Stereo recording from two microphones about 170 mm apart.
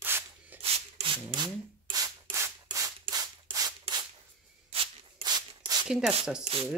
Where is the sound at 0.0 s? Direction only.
10° right (ahead or behind).